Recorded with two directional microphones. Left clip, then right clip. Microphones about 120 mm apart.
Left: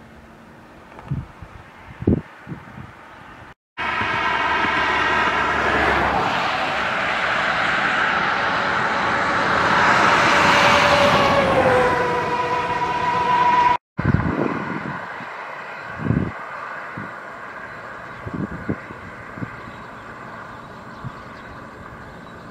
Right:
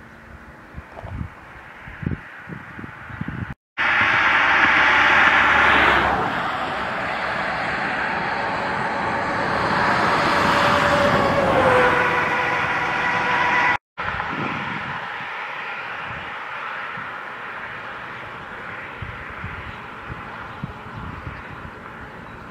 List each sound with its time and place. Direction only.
3.7 s vehicle: 25° right (ahead or behind)
6.1 s vehicle: 30° left (ahead or behind)
11.5 s vehicle: 25° right (ahead or behind)